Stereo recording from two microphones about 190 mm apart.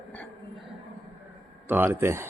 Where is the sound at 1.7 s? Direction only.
10° right (ahead or behind).